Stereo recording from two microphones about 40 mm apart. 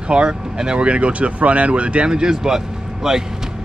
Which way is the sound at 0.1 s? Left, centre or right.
Right.